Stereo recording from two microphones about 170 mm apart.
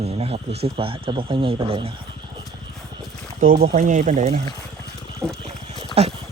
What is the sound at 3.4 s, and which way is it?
Speech, 60° right (ahead or behind).